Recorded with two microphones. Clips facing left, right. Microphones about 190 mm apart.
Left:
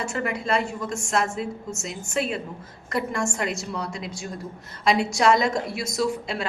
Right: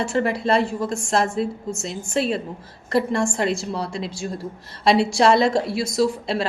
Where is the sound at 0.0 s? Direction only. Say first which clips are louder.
Right 6 dB; 30° right (ahead or behind).